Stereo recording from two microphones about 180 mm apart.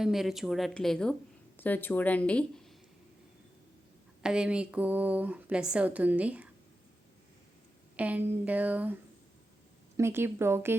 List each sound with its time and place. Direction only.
0.0 s speech: centre (ahead or behind)
4.2 s a woman's voice: 5° right (ahead or behind)
7.9 s a woman's voice: 10° right (ahead or behind)
10.0 s a woman's voice: 15° right (ahead or behind)